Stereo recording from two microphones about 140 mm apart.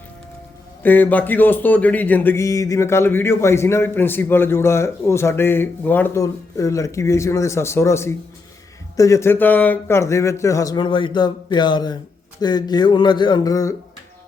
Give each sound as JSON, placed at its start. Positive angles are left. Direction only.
{"t": 0.8, "sound": "speech", "side_deg": 10}
{"t": 10.8, "sound": "speech", "side_deg": 35}